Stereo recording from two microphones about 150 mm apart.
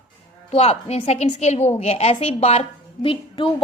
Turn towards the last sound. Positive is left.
turn(degrees=35)  # may be behind; listen again after turning